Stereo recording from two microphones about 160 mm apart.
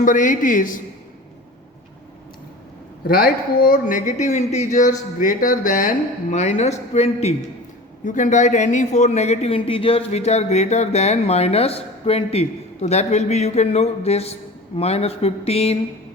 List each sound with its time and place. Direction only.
0.0 s a man's voice: 55° left (ahead or behind)
3.1 s a man's voice: 65° left (ahead or behind)
6.3 s a man's voice: 45° left (ahead or behind)
8.0 s a man's voice: 50° left (ahead or behind)